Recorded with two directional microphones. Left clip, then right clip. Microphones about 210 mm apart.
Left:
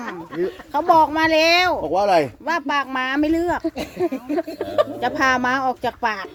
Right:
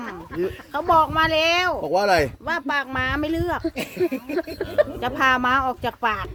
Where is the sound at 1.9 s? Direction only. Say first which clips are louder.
Left 1 dB; 45° right (ahead or behind).